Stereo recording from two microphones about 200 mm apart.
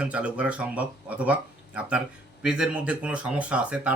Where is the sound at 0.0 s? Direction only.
5° right (ahead or behind).